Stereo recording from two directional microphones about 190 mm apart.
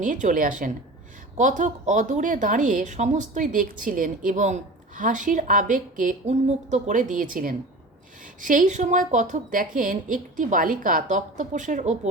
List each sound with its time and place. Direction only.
0.0 s a woman's voice: 40° right (ahead or behind)